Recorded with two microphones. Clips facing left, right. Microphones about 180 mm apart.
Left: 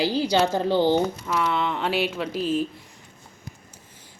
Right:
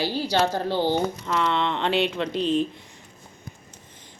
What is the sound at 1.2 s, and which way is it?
Speech, 5° left (ahead or behind).